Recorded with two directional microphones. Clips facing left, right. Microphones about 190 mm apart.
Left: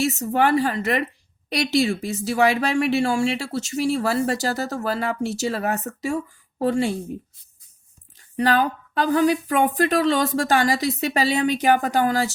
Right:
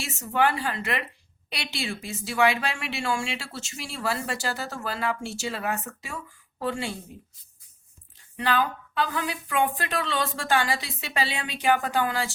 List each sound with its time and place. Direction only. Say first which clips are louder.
0.0 s speech: left 5 dB; 40° left (ahead or behind)
8.4 s speech: left 6 dB; 40° left (ahead or behind)